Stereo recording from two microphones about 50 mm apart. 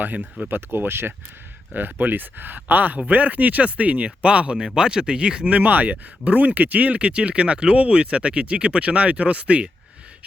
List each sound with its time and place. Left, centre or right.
0.0 s speech: right; by 5.5 s centre
5.5 s speech: right